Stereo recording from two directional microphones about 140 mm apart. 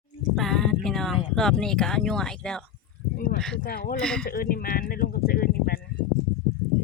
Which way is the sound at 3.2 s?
90° left.